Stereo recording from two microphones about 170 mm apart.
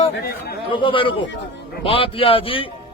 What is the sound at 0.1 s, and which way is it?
Speech, 70° left (ahead or behind).